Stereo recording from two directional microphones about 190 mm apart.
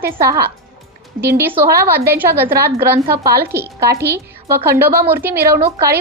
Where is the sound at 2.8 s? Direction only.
15° right (ahead or behind).